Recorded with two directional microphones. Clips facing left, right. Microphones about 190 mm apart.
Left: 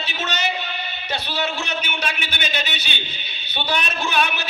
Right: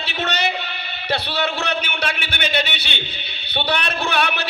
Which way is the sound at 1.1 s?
65° right (ahead or behind).